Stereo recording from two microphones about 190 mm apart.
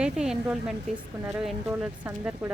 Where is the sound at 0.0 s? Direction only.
5° right (ahead or behind).